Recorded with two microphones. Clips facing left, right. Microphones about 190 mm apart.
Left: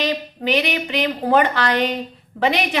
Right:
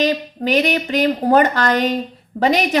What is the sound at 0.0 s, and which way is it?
A woman's voice, 45° right (ahead or behind).